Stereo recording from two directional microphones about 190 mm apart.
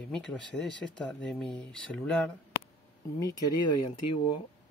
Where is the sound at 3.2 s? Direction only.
20° left (ahead or behind).